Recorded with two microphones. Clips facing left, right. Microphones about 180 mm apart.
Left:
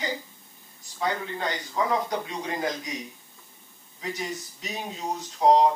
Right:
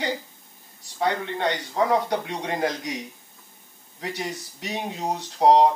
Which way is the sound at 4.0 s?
70° right (ahead or behind).